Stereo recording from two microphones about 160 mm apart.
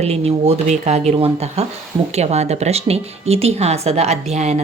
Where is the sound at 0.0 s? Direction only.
40° right (ahead or behind).